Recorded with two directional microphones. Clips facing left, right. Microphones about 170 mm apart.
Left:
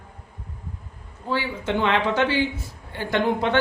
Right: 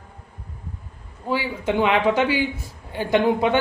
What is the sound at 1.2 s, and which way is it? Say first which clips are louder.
A man's voice: right 2 dB; 15° right (ahead or behind).